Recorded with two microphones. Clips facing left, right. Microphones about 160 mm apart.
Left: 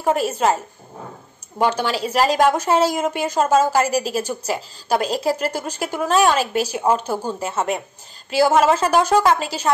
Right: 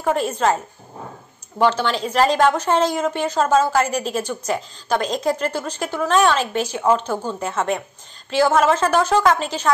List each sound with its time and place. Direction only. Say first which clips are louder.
0.1 s a woman's voice: left 1 dB; 10° left (ahead or behind)
1.6 s a woman's voice: right 1 dB; 10° left (ahead or behind)